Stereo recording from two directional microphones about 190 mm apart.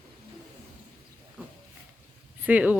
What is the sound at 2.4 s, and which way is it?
Speech, 10° right (ahead or behind).